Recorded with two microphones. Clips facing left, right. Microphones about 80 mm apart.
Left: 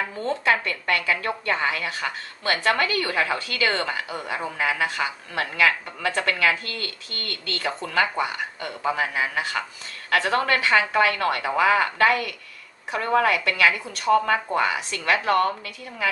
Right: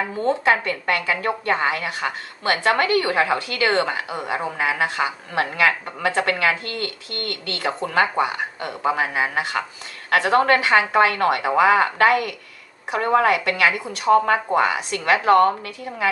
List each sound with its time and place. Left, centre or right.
0.5 s a woman's voice: right
6.1 s a woman's voice: right